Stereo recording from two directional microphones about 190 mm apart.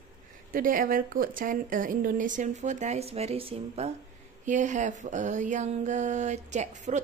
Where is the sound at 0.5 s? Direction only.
45° right (ahead or behind).